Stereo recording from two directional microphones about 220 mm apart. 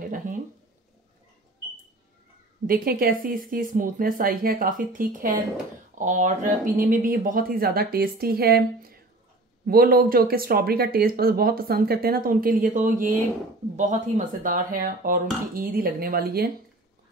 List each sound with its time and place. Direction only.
2.6 s speech: 40° right (ahead or behind)